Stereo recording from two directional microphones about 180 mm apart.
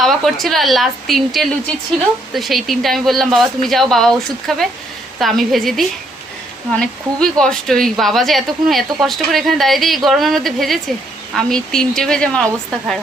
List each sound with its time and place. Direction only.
0.0 s a woman's voice: centre (ahead or behind)